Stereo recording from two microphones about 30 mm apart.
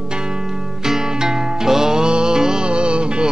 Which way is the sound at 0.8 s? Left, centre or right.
Centre.